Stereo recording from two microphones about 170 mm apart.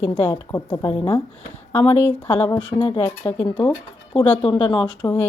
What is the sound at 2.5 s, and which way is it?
Speech, 30° left (ahead or behind).